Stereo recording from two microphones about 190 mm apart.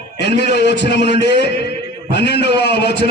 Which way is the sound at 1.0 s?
40° right (ahead or behind).